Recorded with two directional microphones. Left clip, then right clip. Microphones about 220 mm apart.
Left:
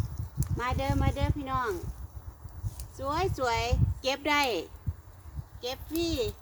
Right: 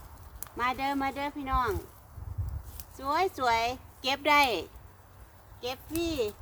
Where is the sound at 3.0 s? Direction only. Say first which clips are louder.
Right 2 dB; 45° right (ahead or behind).